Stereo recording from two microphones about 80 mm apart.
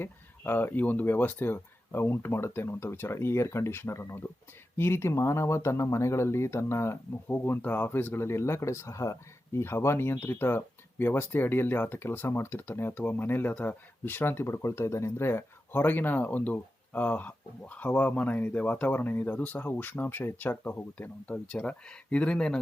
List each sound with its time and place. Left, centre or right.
0.0 s speech: left